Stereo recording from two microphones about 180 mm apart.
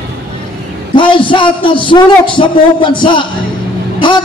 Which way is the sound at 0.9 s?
30° left (ahead or behind).